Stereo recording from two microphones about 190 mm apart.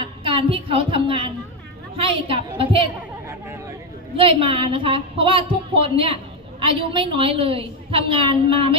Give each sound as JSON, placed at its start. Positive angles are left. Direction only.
{"t": 0.0, "sound": "a woman's voice", "side_deg": -30}
{"t": 4.2, "sound": "a woman's voice", "side_deg": -30}